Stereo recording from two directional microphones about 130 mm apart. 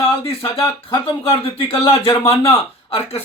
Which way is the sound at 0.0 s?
45° left (ahead or behind).